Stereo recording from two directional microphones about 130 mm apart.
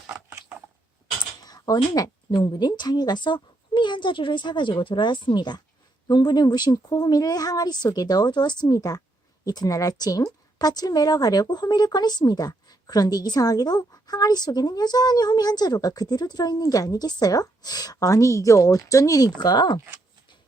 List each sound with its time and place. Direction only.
1.5 s a woman's voice: 30° left (ahead or behind)